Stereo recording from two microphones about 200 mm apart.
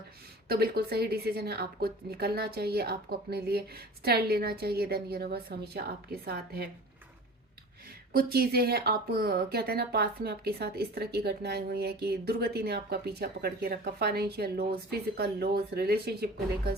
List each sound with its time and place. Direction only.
0.4 s speech: 50° right (ahead or behind)
8.1 s speech: 50° right (ahead or behind)